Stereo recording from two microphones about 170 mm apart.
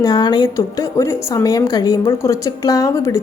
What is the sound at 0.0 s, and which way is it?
A woman's voice, 25° left (ahead or behind).